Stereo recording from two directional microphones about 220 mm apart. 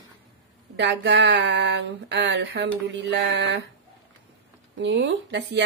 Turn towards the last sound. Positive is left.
turn(degrees=-55)  # may be behind; listen again after turning